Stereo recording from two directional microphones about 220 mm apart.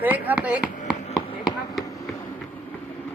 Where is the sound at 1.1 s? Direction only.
25° left (ahead or behind).